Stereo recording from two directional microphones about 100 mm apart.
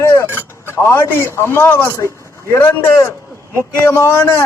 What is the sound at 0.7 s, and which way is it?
A man's voice, 25° left (ahead or behind).